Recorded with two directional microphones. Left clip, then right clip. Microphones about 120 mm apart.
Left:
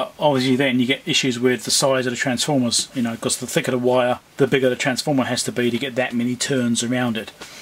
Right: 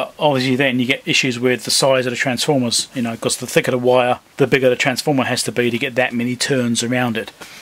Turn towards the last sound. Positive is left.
turn(degrees=-25)  # may be behind; listen again after turning